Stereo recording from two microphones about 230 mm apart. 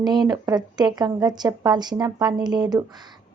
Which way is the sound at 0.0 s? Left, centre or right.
Centre.